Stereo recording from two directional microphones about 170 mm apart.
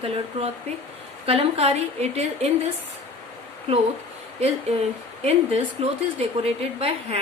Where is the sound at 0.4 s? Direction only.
40° right (ahead or behind).